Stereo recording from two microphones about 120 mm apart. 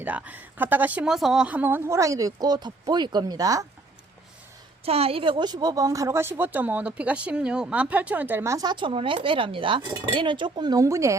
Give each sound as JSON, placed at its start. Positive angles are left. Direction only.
{"t": 0.0, "sound": "a woman's voice", "side_deg": -15}
{"t": 4.9, "sound": "speech", "side_deg": -55}
{"t": 8.6, "sound": "a woman's voice", "side_deg": -40}